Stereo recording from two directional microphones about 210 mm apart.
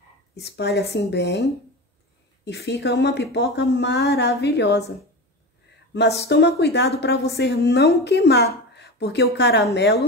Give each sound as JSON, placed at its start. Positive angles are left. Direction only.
{"t": 0.4, "sound": "speech", "side_deg": 50}
{"t": 5.9, "sound": "speech", "side_deg": 55}